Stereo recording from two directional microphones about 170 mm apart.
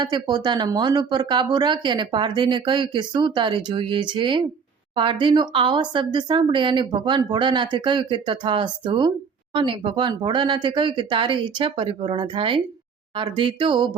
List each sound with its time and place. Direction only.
0.0 s speech: 25° right (ahead or behind)